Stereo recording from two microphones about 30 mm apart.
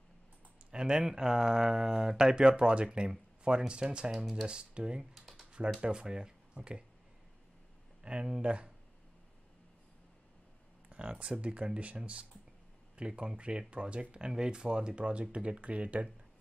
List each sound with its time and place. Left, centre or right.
0.7 s speech: right
5.1 s typing: centre
5.8 s speech: right
8.0 s speech: right
10.9 s speech: right
14.1 s speech: right